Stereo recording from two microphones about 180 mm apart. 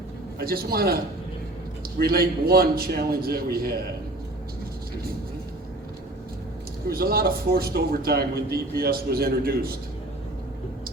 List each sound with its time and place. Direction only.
0.3 s a man's voice: 55° right (ahead or behind)
6.8 s a man's voice: 55° right (ahead or behind)